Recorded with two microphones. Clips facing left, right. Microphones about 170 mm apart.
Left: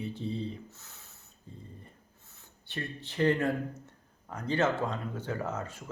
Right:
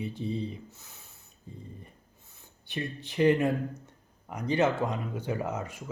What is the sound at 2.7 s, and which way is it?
Speech, 15° right (ahead or behind).